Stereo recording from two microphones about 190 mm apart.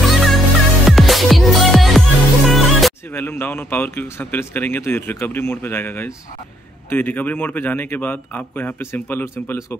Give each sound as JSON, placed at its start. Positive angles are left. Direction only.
{"t": 0.0, "sound": "music", "side_deg": 0}
{"t": 3.1, "sound": "speech", "side_deg": 10}